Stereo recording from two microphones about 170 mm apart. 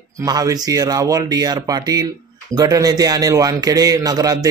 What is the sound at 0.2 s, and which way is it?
A man's voice, 20° right (ahead or behind).